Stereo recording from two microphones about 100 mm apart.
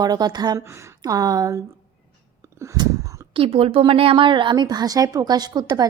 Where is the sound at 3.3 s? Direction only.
70° right (ahead or behind); by 5.8 s 45° right (ahead or behind).